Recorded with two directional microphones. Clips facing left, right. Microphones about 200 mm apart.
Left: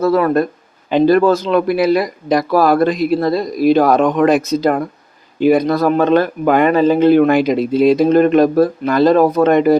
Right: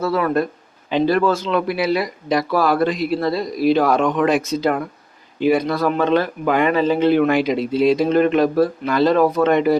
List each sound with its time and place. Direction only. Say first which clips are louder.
0.0 s speech: left 5 dB; 40° left (ahead or behind)